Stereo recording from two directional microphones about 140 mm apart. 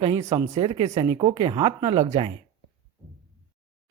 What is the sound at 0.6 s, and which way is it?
Speech, 40° right (ahead or behind).